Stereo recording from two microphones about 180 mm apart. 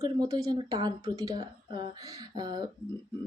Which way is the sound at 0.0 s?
20° right (ahead or behind).